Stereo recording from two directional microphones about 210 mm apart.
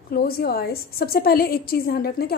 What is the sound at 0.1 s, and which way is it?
A woman's voice, 50° left (ahead or behind).